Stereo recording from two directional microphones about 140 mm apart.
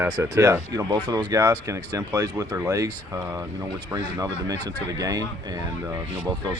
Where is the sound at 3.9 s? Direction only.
25° right (ahead or behind).